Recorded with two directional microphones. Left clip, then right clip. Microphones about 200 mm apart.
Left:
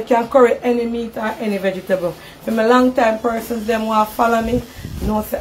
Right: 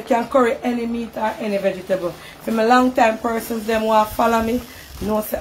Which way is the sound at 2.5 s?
5° left (ahead or behind).